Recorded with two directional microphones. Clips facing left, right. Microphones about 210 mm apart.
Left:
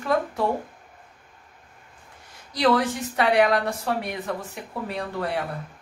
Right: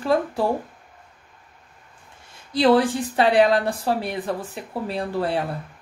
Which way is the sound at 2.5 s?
30° right (ahead or behind).